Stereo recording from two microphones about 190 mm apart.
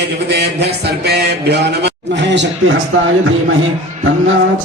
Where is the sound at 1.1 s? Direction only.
60° right (ahead or behind).